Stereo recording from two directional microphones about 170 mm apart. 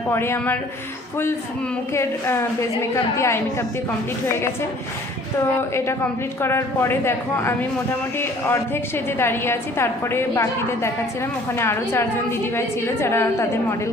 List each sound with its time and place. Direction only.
0.1 s a woman's voice: 15° left (ahead or behind)
1.9 s a woman's voice: 15° left (ahead or behind)
5.4 s a woman's voice: 15° left (ahead or behind)